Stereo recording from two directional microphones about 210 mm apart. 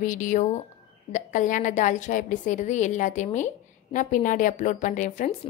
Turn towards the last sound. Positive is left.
turn(degrees=35)  # may be behind; listen again after turning